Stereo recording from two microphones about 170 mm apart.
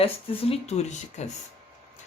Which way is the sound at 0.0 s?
35° left (ahead or behind).